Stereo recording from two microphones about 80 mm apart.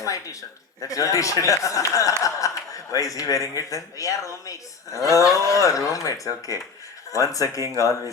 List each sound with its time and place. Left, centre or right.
0.0 s speech: left